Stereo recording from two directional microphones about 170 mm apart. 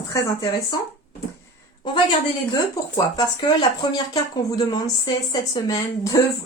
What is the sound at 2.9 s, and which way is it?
Speech, 25° left (ahead or behind).